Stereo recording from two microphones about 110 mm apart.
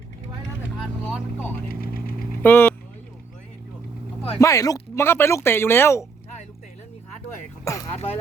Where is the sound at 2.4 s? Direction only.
15° left (ahead or behind).